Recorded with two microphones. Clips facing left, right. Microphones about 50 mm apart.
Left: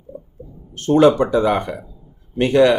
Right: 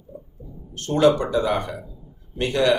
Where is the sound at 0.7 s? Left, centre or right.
Left.